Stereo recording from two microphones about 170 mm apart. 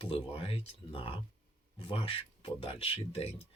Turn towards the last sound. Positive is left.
turn(degrees=30)  # may be behind; listen again after turning